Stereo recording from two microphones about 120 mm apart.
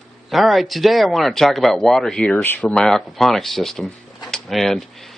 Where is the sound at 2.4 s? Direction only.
15° left (ahead or behind).